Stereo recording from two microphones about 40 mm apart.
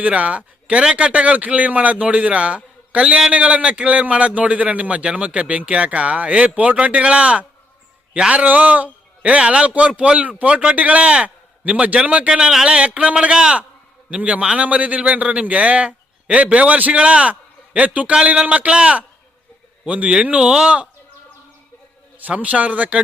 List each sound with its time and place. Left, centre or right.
0.0 s a man's voice: right
13.3 s a man's voice: centre
14.6 s a man's voice: right
18.7 s a man's voice: right
22.2 s a man's voice: right